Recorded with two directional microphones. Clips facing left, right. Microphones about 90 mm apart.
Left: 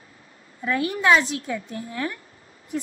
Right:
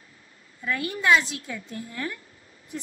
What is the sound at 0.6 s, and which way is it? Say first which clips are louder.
A woman's voice: left 3 dB; 30° left (ahead or behind).